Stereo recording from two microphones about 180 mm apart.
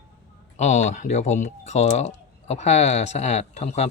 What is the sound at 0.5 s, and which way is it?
Speech, 40° left (ahead or behind).